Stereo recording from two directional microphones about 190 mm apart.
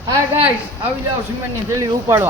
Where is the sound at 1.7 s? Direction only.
15° right (ahead or behind).